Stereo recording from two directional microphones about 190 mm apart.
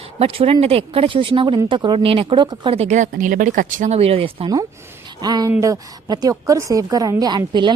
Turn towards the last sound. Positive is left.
turn(degrees=-25)  # may be behind; listen again after turning